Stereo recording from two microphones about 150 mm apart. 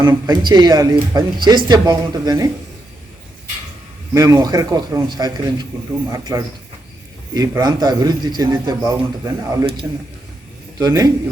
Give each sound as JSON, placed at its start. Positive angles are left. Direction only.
{"t": 0.0, "sound": "speech", "side_deg": -30}
{"t": 4.1, "sound": "speech", "side_deg": -25}